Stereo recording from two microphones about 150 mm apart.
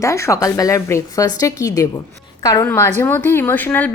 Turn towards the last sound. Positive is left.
turn(degrees=10)  # may be behind; listen again after turning